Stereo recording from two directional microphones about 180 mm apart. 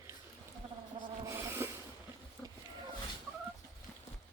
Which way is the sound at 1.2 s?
15° right (ahead or behind).